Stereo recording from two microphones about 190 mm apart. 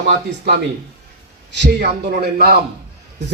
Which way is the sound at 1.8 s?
50° right (ahead or behind).